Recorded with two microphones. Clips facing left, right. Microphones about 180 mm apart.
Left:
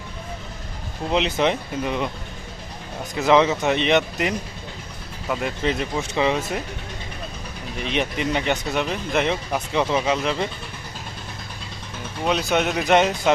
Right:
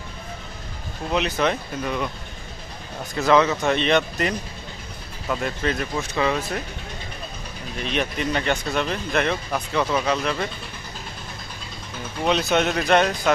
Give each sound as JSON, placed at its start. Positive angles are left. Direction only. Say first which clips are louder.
{"t": 1.1, "sound": "speech", "louder": "left 2 dB", "side_deg": 20}
{"t": 3.2, "sound": "speech", "louder": "left 1 dB", "side_deg": 20}
{"t": 7.8, "sound": "speech", "louder": "left 1 dB", "side_deg": 15}
{"t": 12.2, "sound": "speech", "louder": "right 1 dB", "side_deg": 5}